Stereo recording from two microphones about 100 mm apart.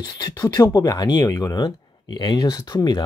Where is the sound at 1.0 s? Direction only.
40° left (ahead or behind).